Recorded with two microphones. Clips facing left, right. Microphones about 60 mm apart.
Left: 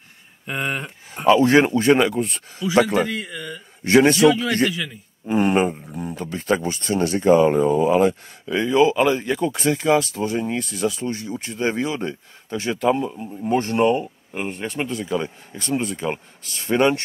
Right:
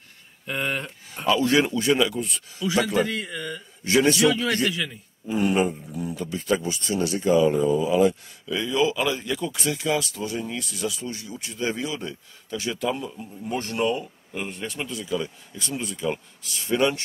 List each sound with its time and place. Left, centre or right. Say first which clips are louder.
0.5 s speech: left 2 dB; centre; by 2.4 s left
2.7 s a man's voice: left 5 dB; left
3.1 s speech: left 1 dB; centre
3.8 s speech: left 5 dB; left
4.3 s speech: left 4 dB; centre
5.2 s speech: left 4 dB; left